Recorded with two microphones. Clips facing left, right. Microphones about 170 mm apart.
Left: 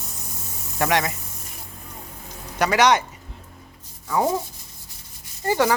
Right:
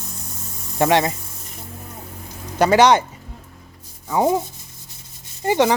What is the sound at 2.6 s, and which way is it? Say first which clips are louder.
Speech: right 5 dB; 30° right (ahead or behind).